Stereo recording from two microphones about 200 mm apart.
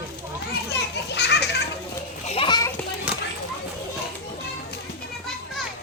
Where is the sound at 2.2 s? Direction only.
30° left (ahead or behind).